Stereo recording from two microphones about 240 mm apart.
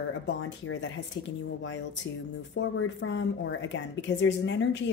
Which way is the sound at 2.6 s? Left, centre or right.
Left.